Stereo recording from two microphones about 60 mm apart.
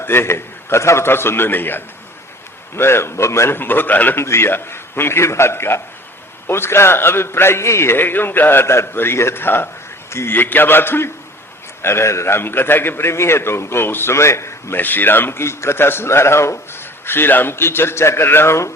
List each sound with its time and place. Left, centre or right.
0.0 s a man's voice: left
4.2 s a man's voice: left
14.8 s a man's voice: left